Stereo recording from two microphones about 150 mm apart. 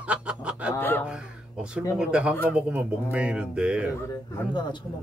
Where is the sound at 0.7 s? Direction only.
15° left (ahead or behind).